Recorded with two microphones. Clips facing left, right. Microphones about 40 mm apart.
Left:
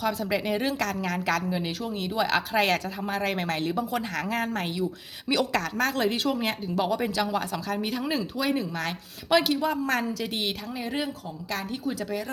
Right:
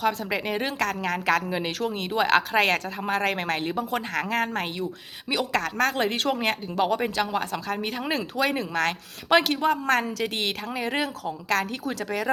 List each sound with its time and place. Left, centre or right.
0.0 s a woman's voice: right